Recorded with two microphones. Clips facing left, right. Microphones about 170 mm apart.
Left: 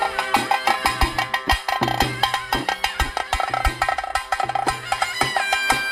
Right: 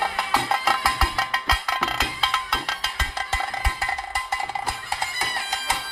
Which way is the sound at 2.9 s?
75° left (ahead or behind).